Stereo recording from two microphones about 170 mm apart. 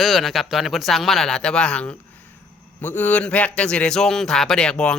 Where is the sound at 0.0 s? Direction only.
Centre (ahead or behind).